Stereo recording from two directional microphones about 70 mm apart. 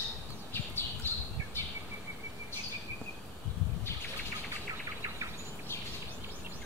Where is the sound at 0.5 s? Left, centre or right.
Left.